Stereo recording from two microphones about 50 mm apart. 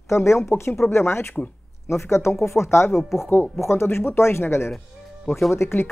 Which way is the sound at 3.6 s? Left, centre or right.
Left.